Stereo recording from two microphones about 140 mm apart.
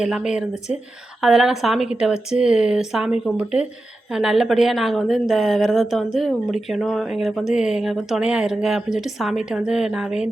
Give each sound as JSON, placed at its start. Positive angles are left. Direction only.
{"t": 0.0, "sound": "speech", "side_deg": -5}